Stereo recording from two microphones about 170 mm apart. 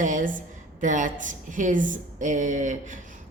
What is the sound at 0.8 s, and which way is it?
A woman's voice, 50° right (ahead or behind).